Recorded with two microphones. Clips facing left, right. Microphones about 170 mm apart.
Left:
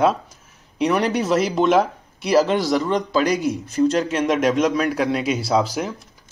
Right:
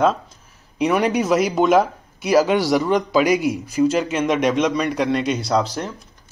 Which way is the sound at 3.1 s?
15° right (ahead or behind).